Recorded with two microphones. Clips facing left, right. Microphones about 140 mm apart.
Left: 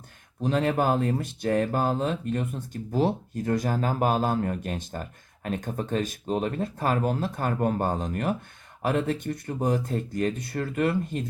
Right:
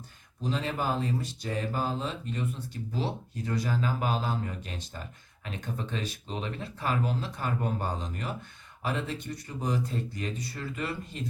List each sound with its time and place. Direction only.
0.4 s speech: 60° left (ahead or behind)